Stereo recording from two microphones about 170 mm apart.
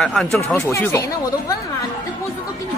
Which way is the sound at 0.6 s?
15° left (ahead or behind).